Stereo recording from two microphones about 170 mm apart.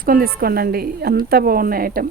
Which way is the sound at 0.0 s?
60° right (ahead or behind).